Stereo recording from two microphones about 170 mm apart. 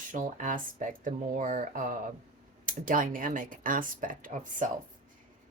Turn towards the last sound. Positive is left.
turn(degrees=-50)  # may be behind; listen again after turning